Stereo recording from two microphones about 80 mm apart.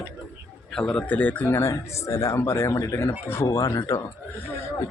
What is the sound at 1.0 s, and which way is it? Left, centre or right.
Speech, left.